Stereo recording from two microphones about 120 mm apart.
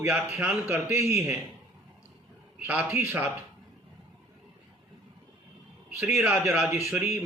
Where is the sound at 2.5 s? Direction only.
10° right (ahead or behind).